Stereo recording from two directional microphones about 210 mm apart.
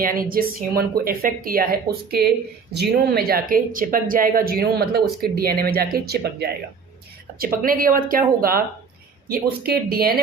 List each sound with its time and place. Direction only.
0.0 s speech: 45° right (ahead or behind)